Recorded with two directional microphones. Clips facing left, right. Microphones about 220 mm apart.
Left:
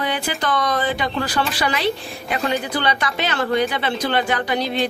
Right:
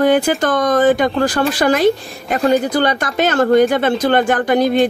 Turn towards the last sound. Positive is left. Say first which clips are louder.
# right 8 dB
turn(degrees=-50)  # may be behind; listen again after turning